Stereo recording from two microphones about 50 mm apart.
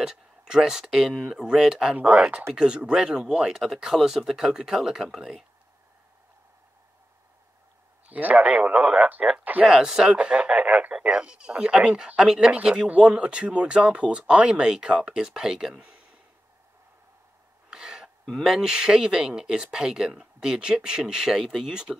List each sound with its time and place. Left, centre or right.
0.0 s speech: centre
2.0 s speech: right
8.1 s speech: right
9.7 s speech: centre
10.1 s speech: right
17.6 s throat clearing: centre
18.4 s speech: centre